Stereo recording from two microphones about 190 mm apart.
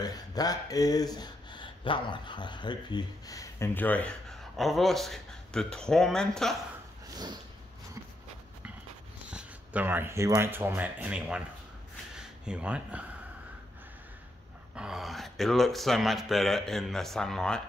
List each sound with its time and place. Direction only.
0.0 s speech: 20° left (ahead or behind); by 6.5 s centre (ahead or behind)
9.3 s speech: 5° right (ahead or behind)
14.8 s speech: centre (ahead or behind)